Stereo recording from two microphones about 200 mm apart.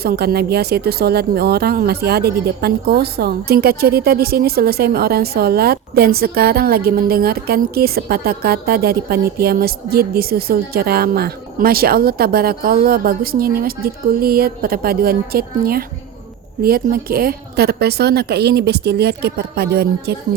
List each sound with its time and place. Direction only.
0.0 s speech: 50° right (ahead or behind)